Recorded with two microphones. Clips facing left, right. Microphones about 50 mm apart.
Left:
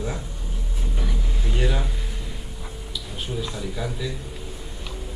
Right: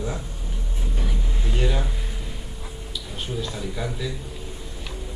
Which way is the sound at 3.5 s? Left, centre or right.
Centre.